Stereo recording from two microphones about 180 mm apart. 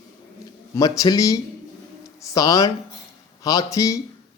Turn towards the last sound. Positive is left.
turn(degrees=20)  # may be behind; listen again after turning